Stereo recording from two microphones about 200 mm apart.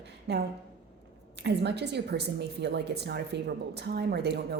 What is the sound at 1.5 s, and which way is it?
A woman's voice, 55° right (ahead or behind).